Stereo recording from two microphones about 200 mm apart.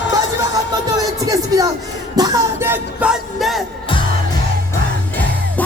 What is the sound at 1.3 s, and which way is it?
Music, 15° right (ahead or behind).